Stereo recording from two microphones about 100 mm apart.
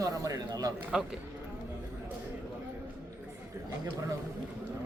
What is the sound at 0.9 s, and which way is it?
Speech, 5° right (ahead or behind).